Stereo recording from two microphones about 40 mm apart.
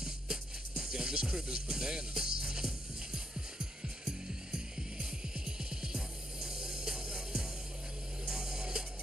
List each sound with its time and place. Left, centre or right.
0.0 s music: centre